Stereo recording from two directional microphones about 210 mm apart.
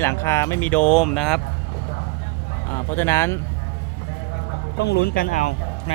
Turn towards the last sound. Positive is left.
turn(degrees=35)  # may be behind; listen again after turning